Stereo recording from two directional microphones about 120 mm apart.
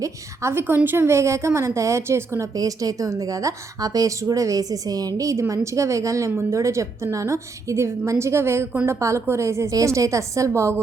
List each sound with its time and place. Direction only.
0.0 s a woman's voice: 20° right (ahead or behind)